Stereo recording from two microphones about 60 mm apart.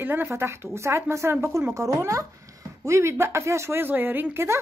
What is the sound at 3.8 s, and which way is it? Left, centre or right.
Speech, right.